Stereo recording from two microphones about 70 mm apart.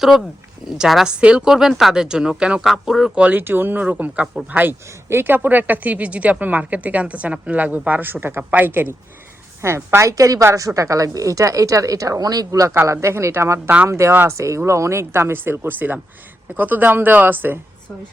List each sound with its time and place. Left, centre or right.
0.8 s a woman's voice: centre
3.3 s a woman's voice: right
5.0 s a woman's voice: right
9.6 s a woman's voice: right
12.8 s a woman's voice: right